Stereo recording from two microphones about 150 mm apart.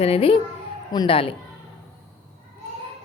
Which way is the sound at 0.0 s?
40° left (ahead or behind).